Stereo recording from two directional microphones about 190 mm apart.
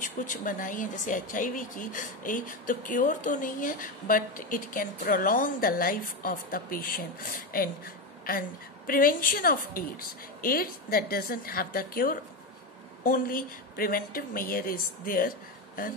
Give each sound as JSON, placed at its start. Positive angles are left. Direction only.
{"t": 0.0, "sound": "speech", "side_deg": 45}